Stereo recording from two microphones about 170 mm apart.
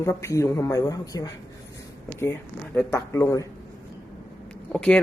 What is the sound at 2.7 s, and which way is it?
Speech, 15° left (ahead or behind).